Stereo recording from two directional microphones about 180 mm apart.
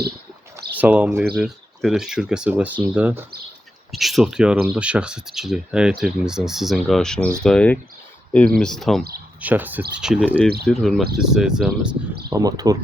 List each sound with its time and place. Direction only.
0.8 s speech: 10° right (ahead or behind)
9.4 s speech: 10° right (ahead or behind)
12.3 s speech: 20° right (ahead or behind)